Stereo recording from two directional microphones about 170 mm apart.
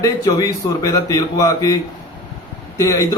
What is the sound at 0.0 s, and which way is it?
A man's voice, 20° left (ahead or behind).